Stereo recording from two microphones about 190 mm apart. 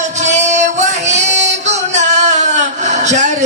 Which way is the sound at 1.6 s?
40° right (ahead or behind).